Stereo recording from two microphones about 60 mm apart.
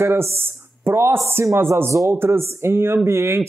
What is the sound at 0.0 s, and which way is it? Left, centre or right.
Speech, right.